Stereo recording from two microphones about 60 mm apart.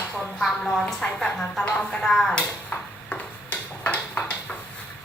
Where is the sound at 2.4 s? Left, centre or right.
Left.